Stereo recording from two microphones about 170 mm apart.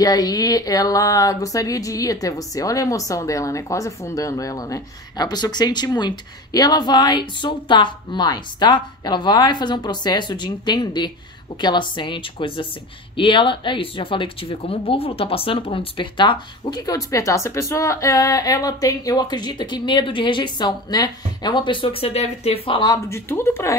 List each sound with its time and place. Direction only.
0.0 s speech: 20° left (ahead or behind)